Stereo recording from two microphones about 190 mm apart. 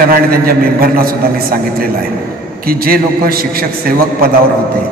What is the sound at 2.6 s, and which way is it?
A man's voice, 50° right (ahead or behind).